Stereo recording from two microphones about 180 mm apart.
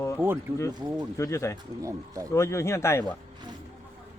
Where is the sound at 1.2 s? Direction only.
15° left (ahead or behind).